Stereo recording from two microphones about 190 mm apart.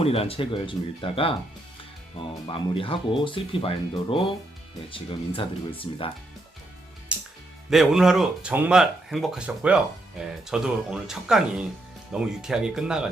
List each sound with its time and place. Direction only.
0.0 s speech: 30° left (ahead or behind)
7.1 s music: 5° right (ahead or behind)
7.7 s speech: centre (ahead or behind)